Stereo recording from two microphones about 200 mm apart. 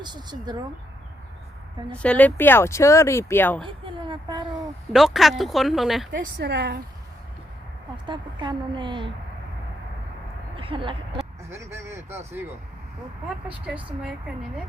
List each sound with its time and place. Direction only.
0.0 s speech: 20° right (ahead or behind)
1.9 s speech: 5° left (ahead or behind)
4.0 s speech: 20° right (ahead or behind)
4.9 s speech: centre (ahead or behind)
6.1 s a woman's voice: 55° right (ahead or behind)
7.9 s speech: 25° right (ahead or behind)
10.6 s speech: 25° right (ahead or behind)
11.5 s speech: 15° right (ahead or behind)